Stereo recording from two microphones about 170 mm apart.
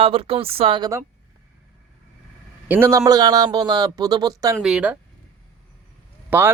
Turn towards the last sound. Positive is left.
turn(degrees=-10)  # may be behind; listen again after turning